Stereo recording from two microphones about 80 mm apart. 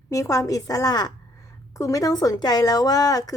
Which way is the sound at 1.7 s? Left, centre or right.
Left.